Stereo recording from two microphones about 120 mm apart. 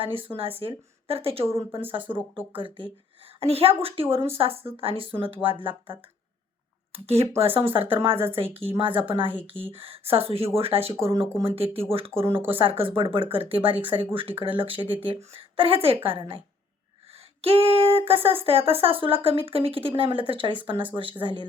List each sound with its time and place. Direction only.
0.0 s speech: 50° right (ahead or behind)
3.4 s speech: 55° right (ahead or behind)
6.9 s speech: 55° right (ahead or behind)
12.2 s speech: 20° right (ahead or behind)
12.5 s speech: 50° right (ahead or behind)
17.4 s speech: 55° right (ahead or behind)